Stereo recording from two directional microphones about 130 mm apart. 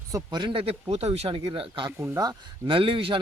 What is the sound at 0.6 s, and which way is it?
Speech, 50° right (ahead or behind).